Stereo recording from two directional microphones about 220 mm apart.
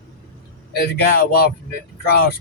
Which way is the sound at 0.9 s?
40° left (ahead or behind).